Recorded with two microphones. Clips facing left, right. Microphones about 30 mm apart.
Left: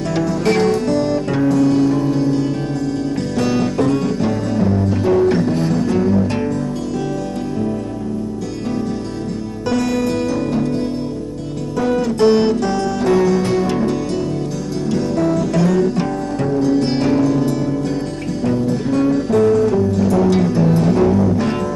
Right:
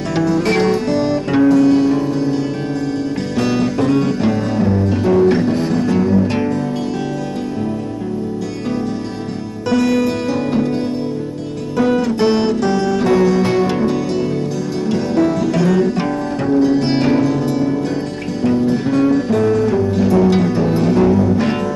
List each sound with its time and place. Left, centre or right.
0.1 s music: centre
3.3 s music: centre
9.8 s music: centre